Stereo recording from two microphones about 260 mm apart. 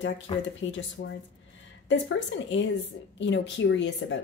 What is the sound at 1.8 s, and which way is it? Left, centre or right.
Speech, left.